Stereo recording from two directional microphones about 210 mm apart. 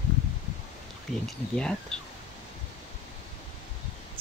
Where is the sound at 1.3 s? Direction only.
5° left (ahead or behind).